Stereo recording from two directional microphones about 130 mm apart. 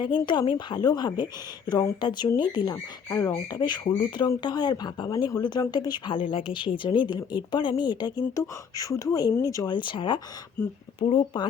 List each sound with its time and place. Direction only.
0.3 s speech: 40° left (ahead or behind)